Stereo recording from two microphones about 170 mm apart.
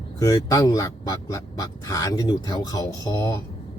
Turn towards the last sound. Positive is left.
turn(degrees=20)  # may be behind; listen again after turning